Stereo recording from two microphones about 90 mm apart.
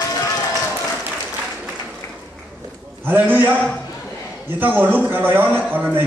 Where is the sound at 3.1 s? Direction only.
20° right (ahead or behind).